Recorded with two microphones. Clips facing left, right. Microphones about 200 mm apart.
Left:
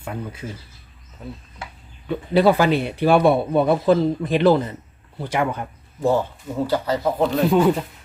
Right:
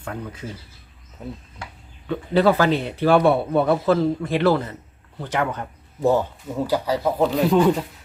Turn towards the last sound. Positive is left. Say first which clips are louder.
# even
turn(degrees=0)  # may be behind; listen again after turning